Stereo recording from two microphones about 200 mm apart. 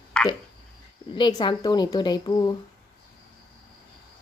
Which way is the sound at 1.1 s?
25° left (ahead or behind).